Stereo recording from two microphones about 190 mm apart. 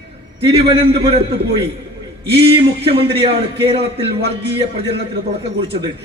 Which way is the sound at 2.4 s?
30° right (ahead or behind).